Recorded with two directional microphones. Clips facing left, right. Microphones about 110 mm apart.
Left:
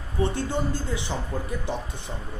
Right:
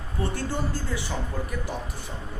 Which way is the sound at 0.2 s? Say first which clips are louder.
Left 3 dB; 20° left (ahead or behind).